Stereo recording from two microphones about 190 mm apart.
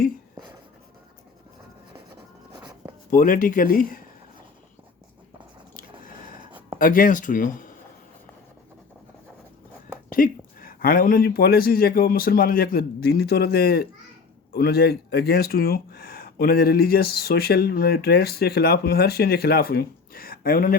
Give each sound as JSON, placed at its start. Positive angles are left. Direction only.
{"t": 3.1, "sound": "speech", "side_deg": 45}
{"t": 6.7, "sound": "speech", "side_deg": 45}
{"t": 10.1, "sound": "speech", "side_deg": 45}